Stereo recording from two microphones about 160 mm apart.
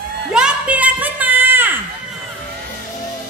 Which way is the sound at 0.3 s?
5° right (ahead or behind).